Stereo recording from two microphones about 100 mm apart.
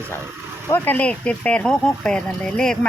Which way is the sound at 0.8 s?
15° left (ahead or behind).